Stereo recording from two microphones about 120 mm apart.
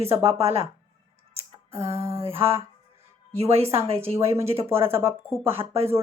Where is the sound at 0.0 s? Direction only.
55° right (ahead or behind).